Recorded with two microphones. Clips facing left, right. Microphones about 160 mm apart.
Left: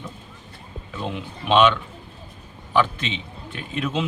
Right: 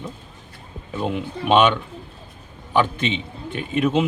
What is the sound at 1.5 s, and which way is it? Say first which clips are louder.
Speech: right 1 dB; 15° right (ahead or behind).